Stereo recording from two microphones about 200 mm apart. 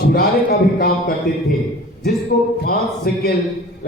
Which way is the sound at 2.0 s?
50° left (ahead or behind).